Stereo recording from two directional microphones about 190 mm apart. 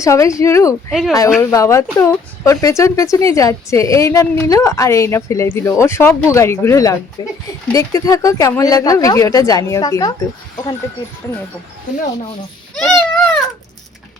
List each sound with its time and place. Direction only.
0.0 s speech: 15° left (ahead or behind)
0.9 s speech: centre (ahead or behind)
1.4 s speech: 15° left (ahead or behind)
12.8 s baby cry: 5° left (ahead or behind)